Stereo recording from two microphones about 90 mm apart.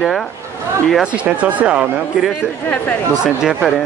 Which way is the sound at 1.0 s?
15° right (ahead or behind).